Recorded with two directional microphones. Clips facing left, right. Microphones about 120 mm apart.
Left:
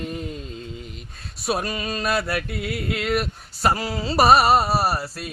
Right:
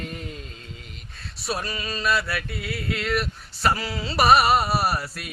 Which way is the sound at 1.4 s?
50° left (ahead or behind).